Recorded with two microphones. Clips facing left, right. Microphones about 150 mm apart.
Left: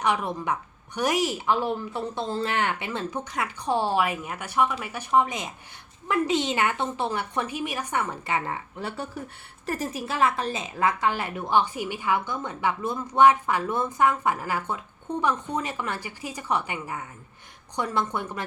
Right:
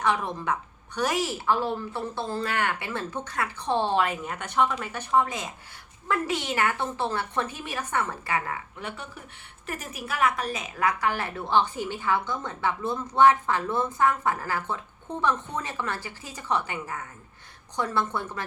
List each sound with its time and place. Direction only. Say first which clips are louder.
0.0 s a woman's voice: left 1 dB; 15° left (ahead or behind)
8.4 s a woman's voice: left 2 dB; 35° left (ahead or behind); by 18.4 s 15° left (ahead or behind)